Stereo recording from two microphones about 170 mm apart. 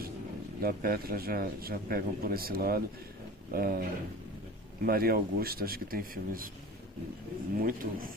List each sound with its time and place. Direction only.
0.6 s a man's voice: 60° right (ahead or behind)
4.9 s a man's voice: 60° right (ahead or behind)
7.6 s a man's voice: 55° right (ahead or behind)